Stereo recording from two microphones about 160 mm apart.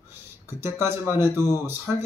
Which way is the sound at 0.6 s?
15° right (ahead or behind).